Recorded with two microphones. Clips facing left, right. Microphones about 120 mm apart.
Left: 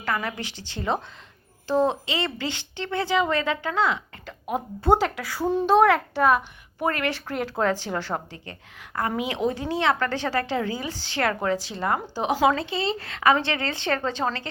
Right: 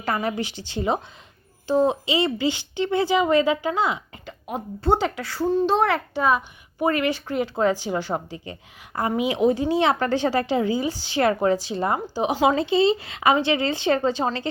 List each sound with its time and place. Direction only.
0.0 s speech: 20° right (ahead or behind)
1.6 s speech: 5° right (ahead or behind)
4.4 s a woman's voice: 5° left (ahead or behind); by 11.9 s 20° right (ahead or behind)
12.1 s a woman's voice: centre (ahead or behind)
12.4 s speech: 20° right (ahead or behind)
13.0 s a woman's voice: 5° right (ahead or behind)